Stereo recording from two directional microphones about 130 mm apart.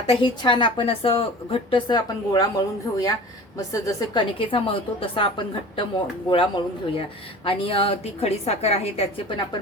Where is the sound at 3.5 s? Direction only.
25° left (ahead or behind).